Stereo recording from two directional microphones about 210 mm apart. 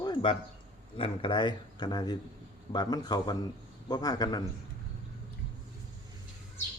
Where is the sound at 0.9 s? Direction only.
25° left (ahead or behind).